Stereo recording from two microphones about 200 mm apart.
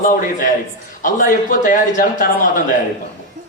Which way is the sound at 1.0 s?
40° left (ahead or behind).